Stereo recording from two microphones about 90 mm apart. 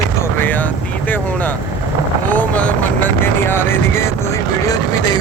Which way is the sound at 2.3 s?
15° left (ahead or behind).